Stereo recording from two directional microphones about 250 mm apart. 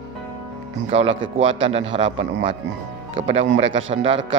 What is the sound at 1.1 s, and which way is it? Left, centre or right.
A man's voice, right.